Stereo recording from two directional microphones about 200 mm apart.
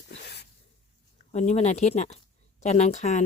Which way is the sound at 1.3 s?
35° left (ahead or behind).